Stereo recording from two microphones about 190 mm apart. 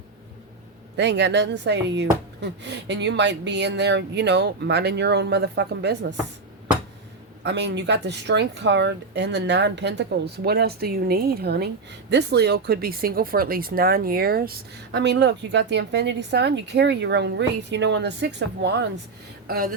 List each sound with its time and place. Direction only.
0.9 s speech: 65° right (ahead or behind)
7.4 s speech: 65° right (ahead or behind)
19.5 s speech: 50° right (ahead or behind)